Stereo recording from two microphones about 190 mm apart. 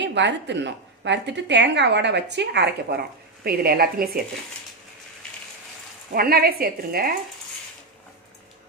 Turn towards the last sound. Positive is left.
turn(degrees=-50)  # may be behind; listen again after turning